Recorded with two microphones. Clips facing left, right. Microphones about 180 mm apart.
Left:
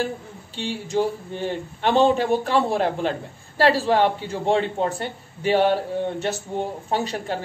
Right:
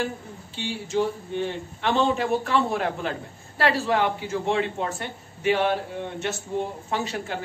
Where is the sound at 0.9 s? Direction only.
35° left (ahead or behind).